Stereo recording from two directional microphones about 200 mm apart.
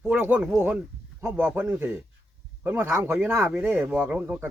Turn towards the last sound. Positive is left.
turn(degrees=-5)  # may be behind; listen again after turning